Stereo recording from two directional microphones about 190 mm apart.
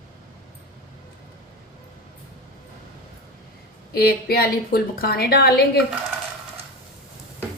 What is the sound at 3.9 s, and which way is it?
A woman's voice, 55° left (ahead or behind).